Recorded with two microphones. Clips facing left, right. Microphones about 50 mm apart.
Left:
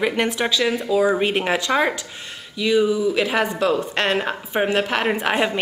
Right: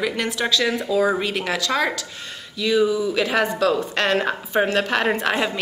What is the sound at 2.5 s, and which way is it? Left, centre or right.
A woman's voice, centre.